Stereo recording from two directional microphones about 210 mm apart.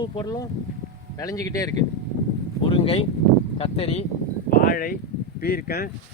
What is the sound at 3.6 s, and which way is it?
Speech, 25° left (ahead or behind).